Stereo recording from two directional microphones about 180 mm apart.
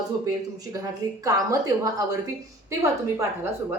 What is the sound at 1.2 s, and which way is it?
A woman's voice, 20° right (ahead or behind).